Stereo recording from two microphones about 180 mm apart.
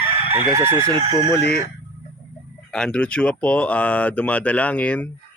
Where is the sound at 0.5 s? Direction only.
15° right (ahead or behind).